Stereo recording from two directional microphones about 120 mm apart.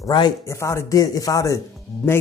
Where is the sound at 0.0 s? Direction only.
35° left (ahead or behind).